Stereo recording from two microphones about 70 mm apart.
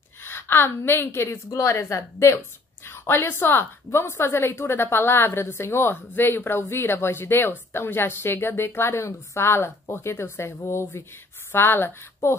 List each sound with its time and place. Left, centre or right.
0.2 s a woman's voice: left